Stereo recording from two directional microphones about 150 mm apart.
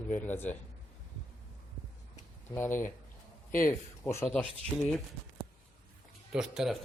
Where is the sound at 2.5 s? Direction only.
15° left (ahead or behind).